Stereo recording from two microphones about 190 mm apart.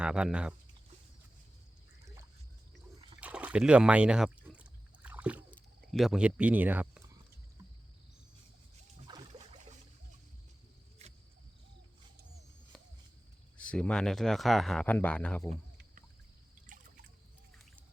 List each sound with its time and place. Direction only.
0.0 s speech: 5° right (ahead or behind)
3.2 s a sound: 5° right (ahead or behind)
5.5 s speech: 5° left (ahead or behind)
9.0 s a sound: 25° right (ahead or behind)
11.0 s cricket: 35° right (ahead or behind)
13.6 s speech: 5° left (ahead or behind)
16.6 s liquid: 45° right (ahead or behind)